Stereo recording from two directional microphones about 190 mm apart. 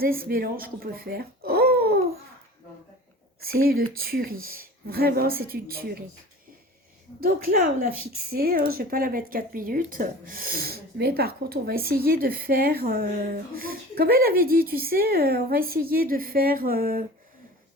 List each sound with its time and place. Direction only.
0.0 s speech: 50° right (ahead or behind)
3.4 s a woman's voice: 50° right (ahead or behind)
7.2 s a woman's voice: 50° right (ahead or behind)